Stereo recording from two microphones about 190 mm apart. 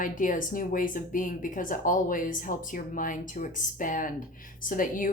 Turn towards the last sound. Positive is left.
turn(degrees=45)  # may be behind; listen again after turning